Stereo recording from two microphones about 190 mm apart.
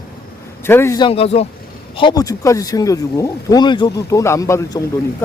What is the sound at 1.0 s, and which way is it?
Speech, 30° left (ahead or behind).